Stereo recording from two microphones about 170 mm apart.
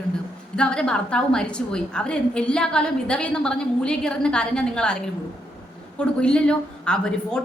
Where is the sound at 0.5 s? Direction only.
5° left (ahead or behind).